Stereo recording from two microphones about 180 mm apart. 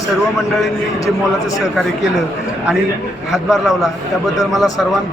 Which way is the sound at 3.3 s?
Centre (ahead or behind).